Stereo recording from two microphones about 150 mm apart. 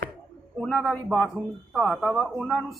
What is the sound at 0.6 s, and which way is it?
Speech, 5° right (ahead or behind).